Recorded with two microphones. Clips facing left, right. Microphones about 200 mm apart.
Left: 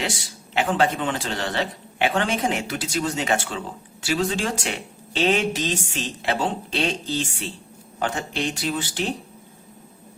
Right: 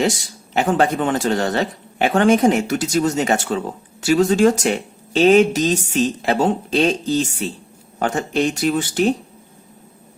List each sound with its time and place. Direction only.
0.0 s speech: 40° right (ahead or behind)